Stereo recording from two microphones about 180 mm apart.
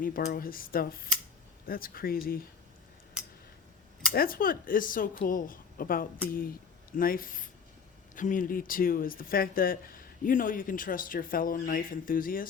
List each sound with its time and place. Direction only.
0.0 s speech: 55° left (ahead or behind)
4.1 s speech: 55° left (ahead or behind)